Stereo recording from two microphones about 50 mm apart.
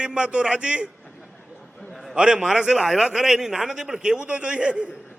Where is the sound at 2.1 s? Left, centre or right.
Centre.